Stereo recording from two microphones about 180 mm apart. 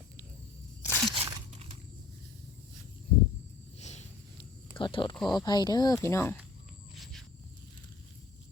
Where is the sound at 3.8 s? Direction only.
40° left (ahead or behind).